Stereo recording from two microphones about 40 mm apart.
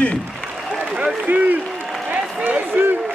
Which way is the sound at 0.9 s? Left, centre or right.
Right.